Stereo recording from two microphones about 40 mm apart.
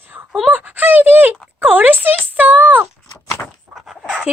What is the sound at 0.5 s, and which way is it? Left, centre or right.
A woman's voice, right.